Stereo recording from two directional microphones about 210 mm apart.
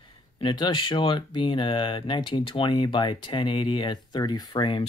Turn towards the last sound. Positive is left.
turn(degrees=20)  # may be behind; listen again after turning